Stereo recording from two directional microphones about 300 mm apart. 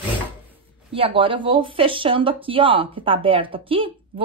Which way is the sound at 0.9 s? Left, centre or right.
Centre.